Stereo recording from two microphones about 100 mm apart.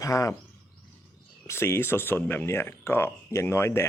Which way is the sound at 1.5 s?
25° left (ahead or behind).